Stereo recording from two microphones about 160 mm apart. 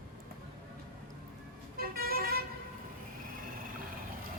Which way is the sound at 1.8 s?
70° right (ahead or behind).